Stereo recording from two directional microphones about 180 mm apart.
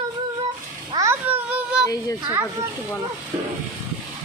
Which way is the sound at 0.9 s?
15° right (ahead or behind).